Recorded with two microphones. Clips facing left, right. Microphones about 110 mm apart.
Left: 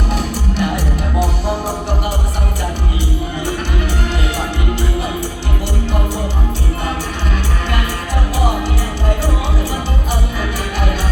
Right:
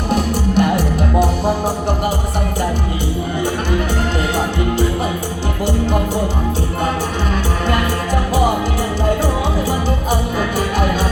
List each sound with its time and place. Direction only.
0.1 s music: 50° right (ahead or behind)